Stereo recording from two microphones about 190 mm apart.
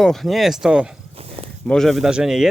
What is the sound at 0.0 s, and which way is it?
Speech, centre (ahead or behind).